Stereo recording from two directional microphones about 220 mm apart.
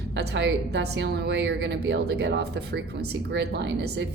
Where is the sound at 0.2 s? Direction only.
50° right (ahead or behind).